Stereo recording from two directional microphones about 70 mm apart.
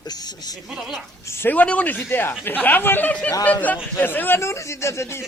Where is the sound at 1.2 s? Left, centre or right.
Left.